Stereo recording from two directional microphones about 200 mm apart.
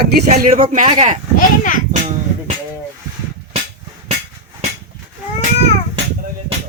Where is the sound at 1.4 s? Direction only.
40° left (ahead or behind).